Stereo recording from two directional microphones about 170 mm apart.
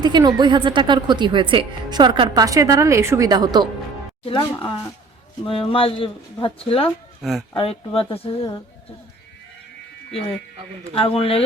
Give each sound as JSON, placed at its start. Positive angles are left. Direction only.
{"t": 0.0, "sound": "speech", "side_deg": -25}
{"t": 4.3, "sound": "speech", "side_deg": 30}
{"t": 7.2, "sound": "speech", "side_deg": 0}
{"t": 7.5, "sound": "speech", "side_deg": 35}
{"t": 10.9, "sound": "speech", "side_deg": 35}